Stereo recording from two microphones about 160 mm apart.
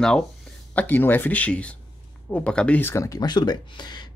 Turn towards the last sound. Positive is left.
turn(degrees=25)  # may be behind; listen again after turning